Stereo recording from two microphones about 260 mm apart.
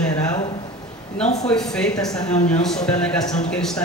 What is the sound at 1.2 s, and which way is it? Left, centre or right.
Speech, left.